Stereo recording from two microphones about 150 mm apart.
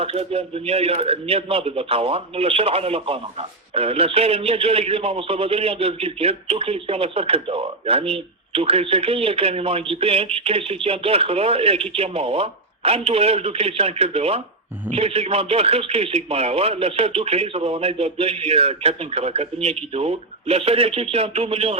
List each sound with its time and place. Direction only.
0.0 s speech: 40° right (ahead or behind)